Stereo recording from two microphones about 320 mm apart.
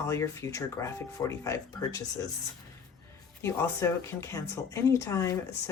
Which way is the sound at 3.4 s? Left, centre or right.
Centre.